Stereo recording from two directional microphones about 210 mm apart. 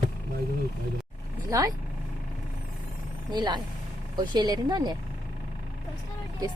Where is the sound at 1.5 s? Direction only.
15° right (ahead or behind).